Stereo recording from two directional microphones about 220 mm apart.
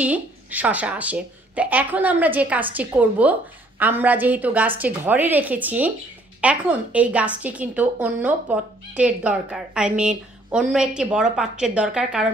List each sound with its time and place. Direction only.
0.0 s a woman's voice: 5° right (ahead or behind)